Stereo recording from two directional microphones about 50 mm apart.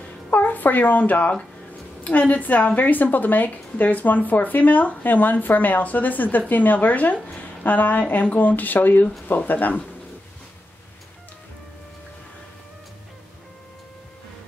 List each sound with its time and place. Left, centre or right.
0.3 s a woman's voice: left